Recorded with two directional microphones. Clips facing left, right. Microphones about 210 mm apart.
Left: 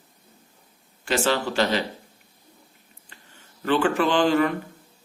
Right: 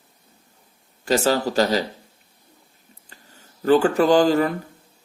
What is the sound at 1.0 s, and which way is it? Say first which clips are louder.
Speech: right 4 dB; 40° right (ahead or behind).